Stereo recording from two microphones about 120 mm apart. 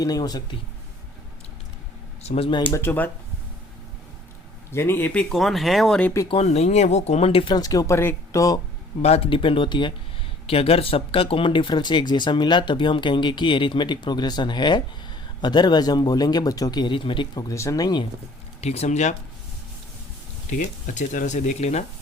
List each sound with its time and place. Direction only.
0.0 s speech: 30° left (ahead or behind)
2.2 s speech: 55° left (ahead or behind)
2.7 s speech: 15° left (ahead or behind)
4.7 s speech: 20° left (ahead or behind)
5.3 s speech: centre (ahead or behind)
6.4 s speech: 65° left (ahead or behind)
7.5 s speech: 30° left (ahead or behind)
9.0 s speech: 60° left (ahead or behind); by 9.9 s 40° left (ahead or behind)
10.4 s speech: 55° left (ahead or behind)
17.5 s speech: 25° left (ahead or behind)
18.6 s speech: 60° left (ahead or behind)
20.6 s speech: 90° left; by 21.8 s 65° left (ahead or behind)